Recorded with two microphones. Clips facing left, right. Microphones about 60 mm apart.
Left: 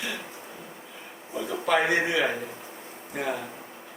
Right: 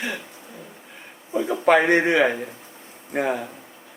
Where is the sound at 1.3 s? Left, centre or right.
Right.